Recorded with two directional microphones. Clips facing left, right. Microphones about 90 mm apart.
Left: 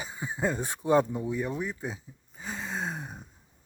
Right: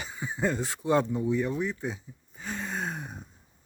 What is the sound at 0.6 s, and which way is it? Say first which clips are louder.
Speech: left 1 dB; 25° left (ahead or behind).